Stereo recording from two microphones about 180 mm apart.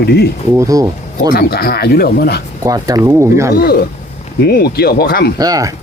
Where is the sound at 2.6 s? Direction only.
20° right (ahead or behind).